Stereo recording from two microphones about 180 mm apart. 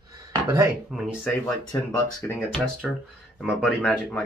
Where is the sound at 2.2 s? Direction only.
5° left (ahead or behind).